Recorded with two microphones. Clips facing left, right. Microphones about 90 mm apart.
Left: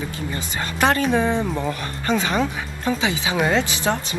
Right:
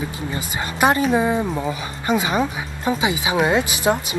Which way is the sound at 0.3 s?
15° right (ahead or behind).